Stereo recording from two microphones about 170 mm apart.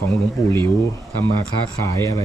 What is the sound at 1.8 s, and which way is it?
Speech, 15° left (ahead or behind).